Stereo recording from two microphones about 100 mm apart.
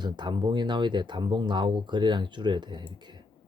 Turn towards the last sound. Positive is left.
turn(degrees=-50)  # may be behind; listen again after turning